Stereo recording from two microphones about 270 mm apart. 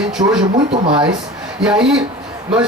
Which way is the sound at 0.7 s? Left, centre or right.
Centre.